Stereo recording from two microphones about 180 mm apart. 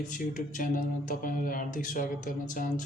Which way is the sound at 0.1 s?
45° left (ahead or behind).